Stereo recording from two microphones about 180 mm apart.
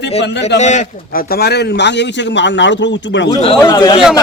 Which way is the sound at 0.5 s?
40° left (ahead or behind).